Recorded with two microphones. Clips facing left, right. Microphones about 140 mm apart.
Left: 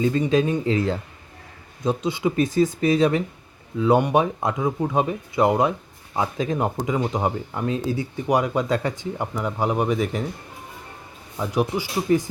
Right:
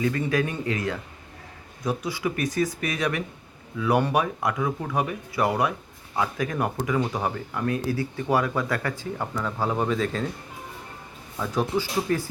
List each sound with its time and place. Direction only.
0.0 s speech: 25° left (ahead or behind)
11.3 s speech: 15° left (ahead or behind)